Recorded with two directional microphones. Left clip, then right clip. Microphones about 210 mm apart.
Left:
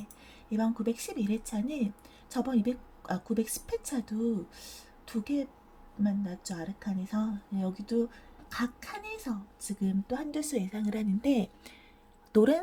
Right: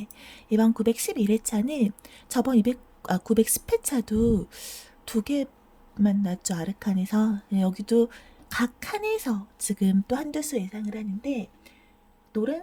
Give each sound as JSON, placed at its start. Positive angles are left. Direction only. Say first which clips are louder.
{"t": 0.2, "sound": "speech", "louder": "right 9 dB", "side_deg": -30}
{"t": 10.4, "sound": "a woman's voice", "louder": "right 3 dB", "side_deg": -15}